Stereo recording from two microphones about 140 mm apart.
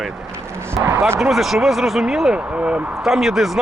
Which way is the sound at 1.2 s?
Centre (ahead or behind).